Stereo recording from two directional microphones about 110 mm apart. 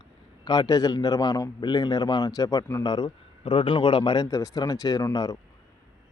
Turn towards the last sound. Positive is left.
turn(degrees=35)  # may be behind; listen again after turning